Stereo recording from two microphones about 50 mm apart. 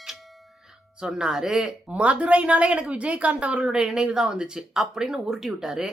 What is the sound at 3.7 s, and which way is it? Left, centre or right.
A woman's voice, centre.